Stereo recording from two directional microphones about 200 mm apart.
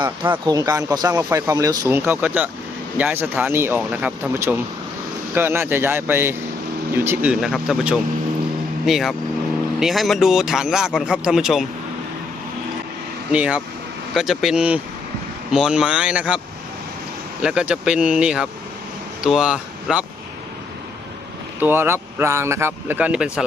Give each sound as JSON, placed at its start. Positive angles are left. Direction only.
{"t": 0.4, "sound": "speech", "side_deg": -15}
{"t": 13.3, "sound": "speech", "side_deg": -5}
{"t": 17.4, "sound": "speech", "side_deg": -5}
{"t": 21.6, "sound": "speech", "side_deg": -10}